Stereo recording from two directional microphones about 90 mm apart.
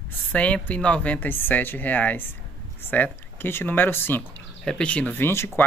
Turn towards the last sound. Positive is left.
turn(degrees=25)  # may be behind; listen again after turning